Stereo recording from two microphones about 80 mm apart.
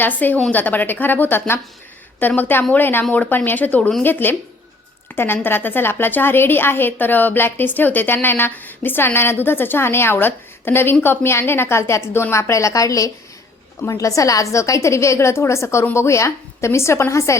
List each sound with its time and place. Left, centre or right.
0.0 s a woman's voice: left